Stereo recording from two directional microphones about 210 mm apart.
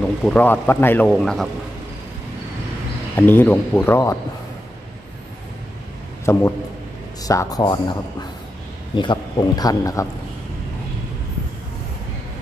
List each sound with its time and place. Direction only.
0.2 s a man's voice: 5° left (ahead or behind)
3.2 s speech: 10° left (ahead or behind)
6.3 s a man's voice: 15° left (ahead or behind)